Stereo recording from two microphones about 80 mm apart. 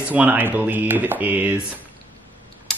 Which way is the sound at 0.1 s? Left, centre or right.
Centre.